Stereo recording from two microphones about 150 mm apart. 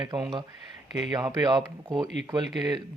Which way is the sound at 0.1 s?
35° right (ahead or behind).